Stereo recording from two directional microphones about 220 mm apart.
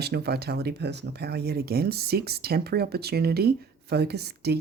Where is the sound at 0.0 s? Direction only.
45° right (ahead or behind).